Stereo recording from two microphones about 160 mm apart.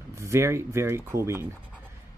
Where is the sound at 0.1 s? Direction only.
15° right (ahead or behind).